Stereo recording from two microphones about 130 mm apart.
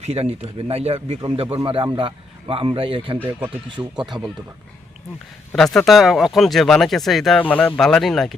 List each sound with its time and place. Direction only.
0.0 s speech: 50° right (ahead or behind)
5.5 s speech: 5° left (ahead or behind)
7.4 s speech: 15° left (ahead or behind)